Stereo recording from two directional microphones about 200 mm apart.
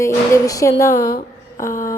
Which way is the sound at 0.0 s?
15° left (ahead or behind).